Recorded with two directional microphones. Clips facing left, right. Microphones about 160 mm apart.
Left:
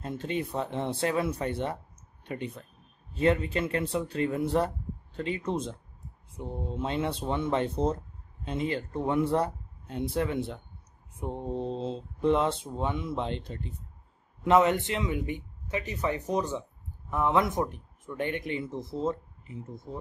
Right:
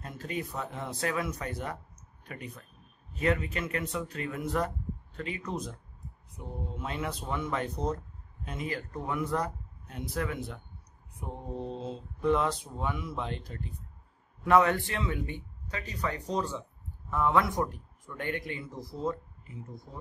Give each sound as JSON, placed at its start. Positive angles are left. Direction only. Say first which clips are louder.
{"t": 0.0, "sound": "speech", "louder": "left 5 dB", "side_deg": 25}